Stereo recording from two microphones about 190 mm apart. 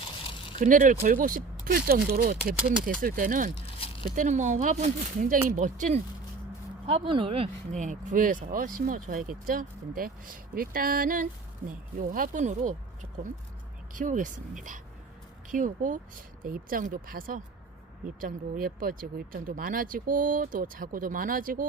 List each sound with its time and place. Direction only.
0.6 s speech: 45° right (ahead or behind)
6.8 s speech: 30° right (ahead or behind); by 21.7 s 45° right (ahead or behind)